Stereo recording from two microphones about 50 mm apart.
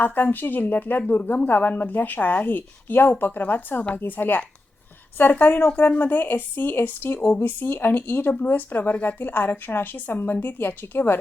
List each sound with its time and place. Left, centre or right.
0.0 s a woman's voice: left